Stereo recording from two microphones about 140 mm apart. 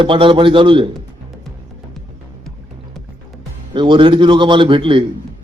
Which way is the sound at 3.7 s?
35° right (ahead or behind).